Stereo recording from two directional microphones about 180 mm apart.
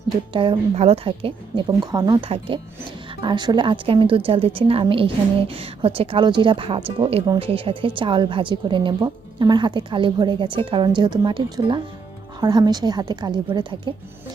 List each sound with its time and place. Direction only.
0.3 s a woman's voice: 30° right (ahead or behind)